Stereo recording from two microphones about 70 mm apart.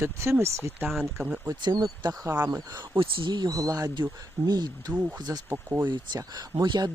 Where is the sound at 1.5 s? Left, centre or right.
Right.